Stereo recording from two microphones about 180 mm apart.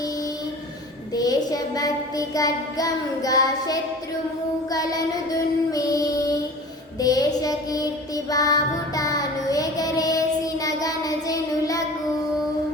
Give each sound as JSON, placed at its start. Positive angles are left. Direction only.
{"t": 1.1, "sound": "child singing", "side_deg": 20}